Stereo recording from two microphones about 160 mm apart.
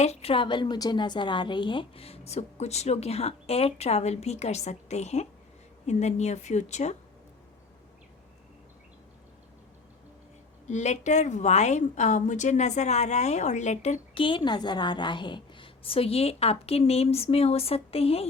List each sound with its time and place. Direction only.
0.0 s a woman's voice: 40° left (ahead or behind)
10.7 s a woman's voice: 45° left (ahead or behind)